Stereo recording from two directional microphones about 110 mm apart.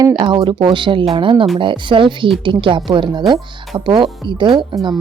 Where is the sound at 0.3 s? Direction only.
45° right (ahead or behind).